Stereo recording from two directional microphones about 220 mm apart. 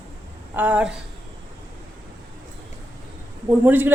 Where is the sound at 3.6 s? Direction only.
10° right (ahead or behind).